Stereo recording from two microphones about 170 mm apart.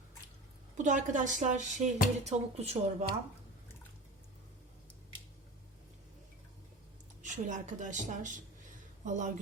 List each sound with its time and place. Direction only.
0.8 s speech: 50° right (ahead or behind)
7.2 s speech: 45° right (ahead or behind)